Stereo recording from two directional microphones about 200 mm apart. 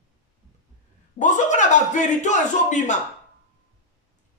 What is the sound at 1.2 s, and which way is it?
A man's voice, 40° left (ahead or behind).